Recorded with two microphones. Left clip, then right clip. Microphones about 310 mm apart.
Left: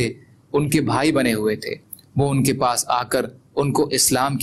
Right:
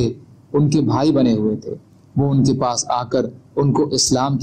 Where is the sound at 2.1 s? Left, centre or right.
Left.